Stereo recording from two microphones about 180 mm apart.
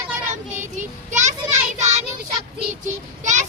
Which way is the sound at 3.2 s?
40° right (ahead or behind).